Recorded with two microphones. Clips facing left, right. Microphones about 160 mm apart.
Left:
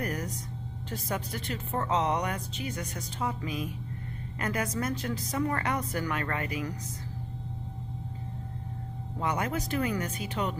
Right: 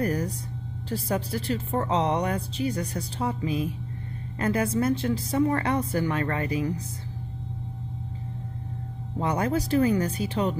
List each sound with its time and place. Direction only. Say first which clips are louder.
0.0 s vehicle: right 7 dB; 30° right (ahead or behind)
0.8 s a woman's voice: right 6 dB; 30° right (ahead or behind)
9.2 s a woman's voice: right 5 dB; 30° right (ahead or behind)